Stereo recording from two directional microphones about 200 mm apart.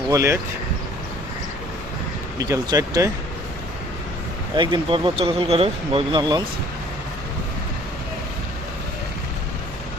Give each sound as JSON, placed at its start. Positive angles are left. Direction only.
{"t": 0.1, "sound": "speech", "side_deg": -15}
{"t": 2.4, "sound": "speech", "side_deg": -15}
{"t": 4.5, "sound": "speech", "side_deg": -25}